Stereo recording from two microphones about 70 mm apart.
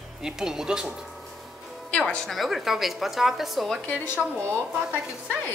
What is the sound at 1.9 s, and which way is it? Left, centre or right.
Speech, centre.